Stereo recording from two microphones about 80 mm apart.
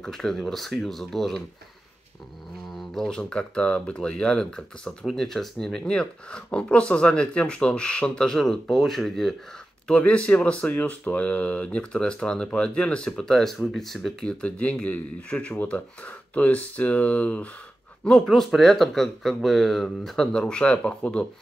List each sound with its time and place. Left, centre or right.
0.0 s speech: centre
2.9 s speech: centre
9.8 s speech: centre
14.4 s speech: centre
18.2 s speech: centre